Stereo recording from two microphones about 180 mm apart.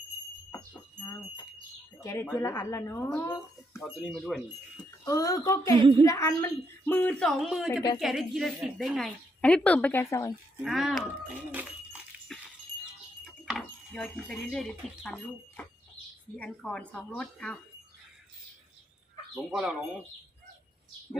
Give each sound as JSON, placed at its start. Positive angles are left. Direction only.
{"t": 0.5, "sound": "wind chime", "side_deg": 20}
{"t": 2.0, "sound": "a woman's voice", "side_deg": 15}
{"t": 3.8, "sound": "speech", "side_deg": -5}
{"t": 5.0, "sound": "a woman's voice", "side_deg": 20}
{"t": 7.7, "sound": "speech", "side_deg": 20}
{"t": 7.9, "sound": "a woman's voice", "side_deg": 0}
{"t": 10.6, "sound": "speech", "side_deg": 0}
{"t": 13.4, "sound": "speech", "side_deg": 0}
{"t": 19.5, "sound": "speech", "side_deg": 0}